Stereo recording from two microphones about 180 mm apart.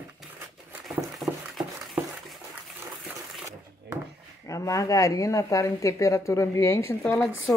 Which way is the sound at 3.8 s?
65° right (ahead or behind).